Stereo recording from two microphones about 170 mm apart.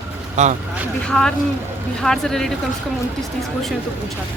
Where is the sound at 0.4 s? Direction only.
45° right (ahead or behind).